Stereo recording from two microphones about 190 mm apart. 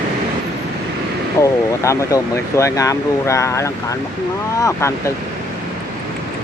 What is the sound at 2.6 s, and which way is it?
Speech, 15° left (ahead or behind).